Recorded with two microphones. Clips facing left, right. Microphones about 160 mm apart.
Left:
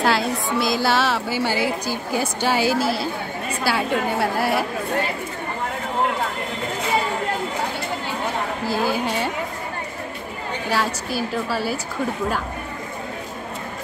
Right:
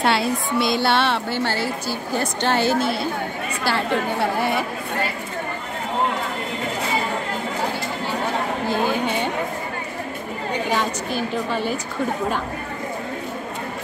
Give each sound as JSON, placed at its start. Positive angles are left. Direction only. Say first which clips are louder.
{"t": 0.0, "sound": "a woman's voice", "louder": "even", "side_deg": 0}
{"t": 8.6, "sound": "a woman's voice", "louder": "even", "side_deg": 5}
{"t": 10.7, "sound": "a woman's voice", "louder": "left 2 dB", "side_deg": 5}